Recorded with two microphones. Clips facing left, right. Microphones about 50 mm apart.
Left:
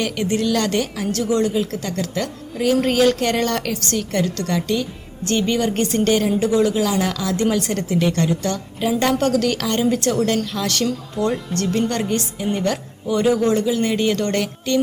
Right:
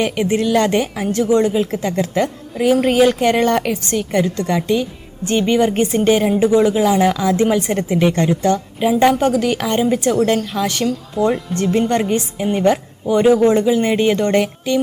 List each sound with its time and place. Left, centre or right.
0.0 s a woman's voice: right